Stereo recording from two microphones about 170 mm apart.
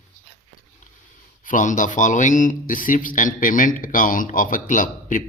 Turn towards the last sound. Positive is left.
turn(degrees=50)  # may be behind; listen again after turning